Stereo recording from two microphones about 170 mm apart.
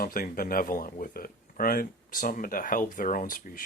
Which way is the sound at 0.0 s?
55° left (ahead or behind).